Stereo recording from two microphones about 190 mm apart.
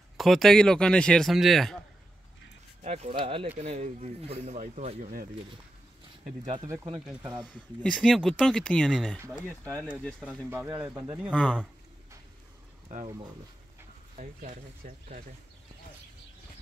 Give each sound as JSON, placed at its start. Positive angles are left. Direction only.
{"t": 0.2, "sound": "speech", "side_deg": 0}
{"t": 2.8, "sound": "speech", "side_deg": -35}
{"t": 6.4, "sound": "speech", "side_deg": -25}
{"t": 7.8, "sound": "speech", "side_deg": 5}
{"t": 10.2, "sound": "speech", "side_deg": -15}
{"t": 12.8, "sound": "speech", "side_deg": -35}